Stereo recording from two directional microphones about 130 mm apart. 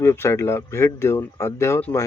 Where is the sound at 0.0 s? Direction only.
20° left (ahead or behind).